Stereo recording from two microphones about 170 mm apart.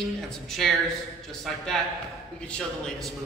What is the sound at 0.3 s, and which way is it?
A man's voice, centre (ahead or behind).